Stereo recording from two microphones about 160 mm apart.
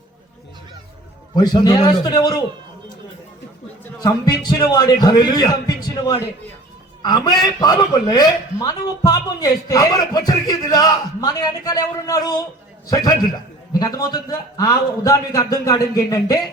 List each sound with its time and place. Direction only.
1.4 s a man's voice: 25° left (ahead or behind)
4.0 s a man's voice: 25° left (ahead or behind)
7.0 s a man's voice: 25° left (ahead or behind)
13.7 s a man's voice: 25° left (ahead or behind)